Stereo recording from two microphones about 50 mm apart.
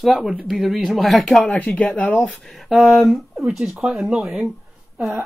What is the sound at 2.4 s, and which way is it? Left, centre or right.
Speech, centre.